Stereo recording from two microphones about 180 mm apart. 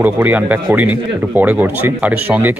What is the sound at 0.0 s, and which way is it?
Speech, 10° right (ahead or behind).